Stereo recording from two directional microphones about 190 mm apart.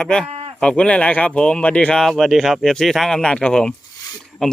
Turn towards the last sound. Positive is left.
turn(degrees=5)  # may be behind; listen again after turning